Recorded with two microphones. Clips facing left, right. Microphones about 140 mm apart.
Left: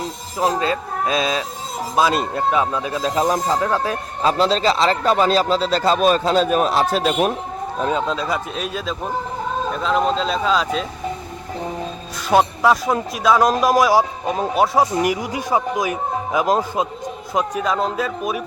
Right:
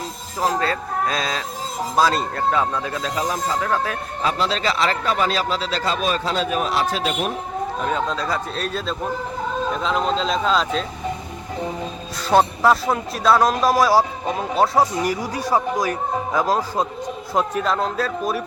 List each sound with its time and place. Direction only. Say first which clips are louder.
0.4 s a man's voice: left 2 dB; 15° left (ahead or behind)
3.0 s speech: left 8 dB; 35° left (ahead or behind)
7.9 s a man's voice: left 4 dB; 20° left (ahead or behind)
12.3 s a man's voice: left 1 dB; 5° left (ahead or behind)
17.3 s a man's voice: even; 5° left (ahead or behind)